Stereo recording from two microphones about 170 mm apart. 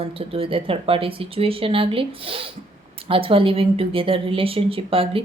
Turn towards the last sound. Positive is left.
turn(degrees=-35)  # may be behind; listen again after turning